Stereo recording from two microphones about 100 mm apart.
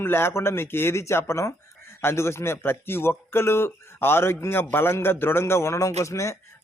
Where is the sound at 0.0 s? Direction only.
25° left (ahead or behind).